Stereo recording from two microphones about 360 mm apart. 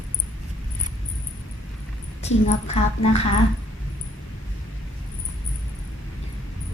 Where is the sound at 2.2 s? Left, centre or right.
Centre.